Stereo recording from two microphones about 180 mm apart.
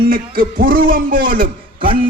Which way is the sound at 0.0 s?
50° right (ahead or behind).